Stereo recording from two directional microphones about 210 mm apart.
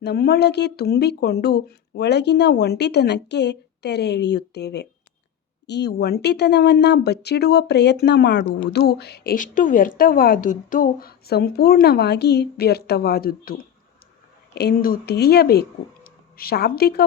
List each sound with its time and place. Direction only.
0.0 s speech: 50° left (ahead or behind)